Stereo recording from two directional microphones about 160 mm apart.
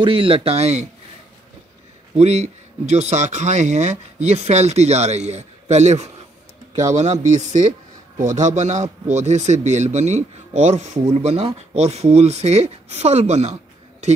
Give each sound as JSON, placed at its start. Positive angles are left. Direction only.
{"t": 0.0, "sound": "speech", "side_deg": -35}
{"t": 2.1, "sound": "speech", "side_deg": -45}